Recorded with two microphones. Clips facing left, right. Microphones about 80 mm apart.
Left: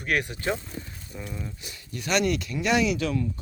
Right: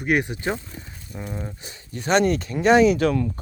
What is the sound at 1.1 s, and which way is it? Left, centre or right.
Speech, right.